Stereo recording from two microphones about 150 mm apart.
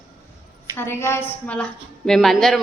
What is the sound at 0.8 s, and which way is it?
A woman's voice, 15° left (ahead or behind).